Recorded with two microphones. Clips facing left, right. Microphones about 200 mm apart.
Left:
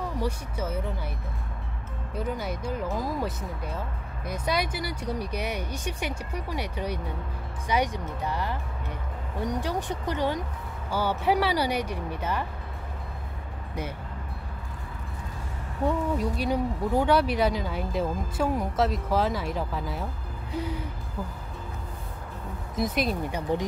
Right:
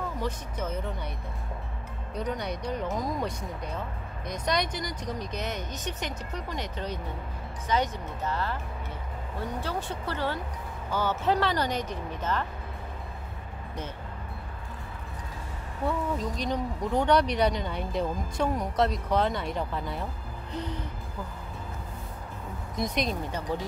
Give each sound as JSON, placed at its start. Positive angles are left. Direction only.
{"t": 0.2, "sound": "speech", "side_deg": 10}
{"t": 2.1, "sound": "speech", "side_deg": 5}
{"t": 16.2, "sound": "speech", "side_deg": 10}
{"t": 22.8, "sound": "speech", "side_deg": 5}